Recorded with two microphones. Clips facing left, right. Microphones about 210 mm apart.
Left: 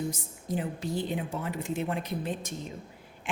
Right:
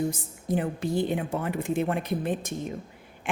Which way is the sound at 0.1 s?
55° right (ahead or behind).